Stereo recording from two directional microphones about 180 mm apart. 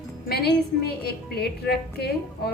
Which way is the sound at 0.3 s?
60° left (ahead or behind).